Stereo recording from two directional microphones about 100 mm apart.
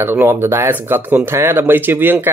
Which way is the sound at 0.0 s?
20° right (ahead or behind).